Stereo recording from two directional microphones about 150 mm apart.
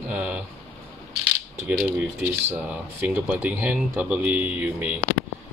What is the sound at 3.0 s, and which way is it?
Speech, 10° right (ahead or behind).